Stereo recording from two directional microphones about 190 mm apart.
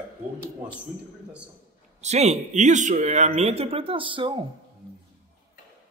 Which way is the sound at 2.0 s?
35° right (ahead or behind).